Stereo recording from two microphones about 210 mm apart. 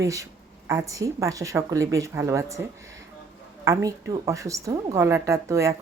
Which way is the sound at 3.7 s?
15° right (ahead or behind).